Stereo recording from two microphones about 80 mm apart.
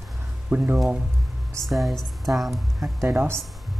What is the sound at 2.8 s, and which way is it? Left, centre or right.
Speech, right.